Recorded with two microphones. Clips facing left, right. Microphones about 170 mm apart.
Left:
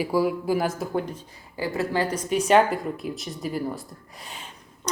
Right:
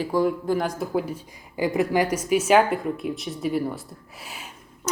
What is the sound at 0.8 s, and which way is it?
Speech, 5° right (ahead or behind).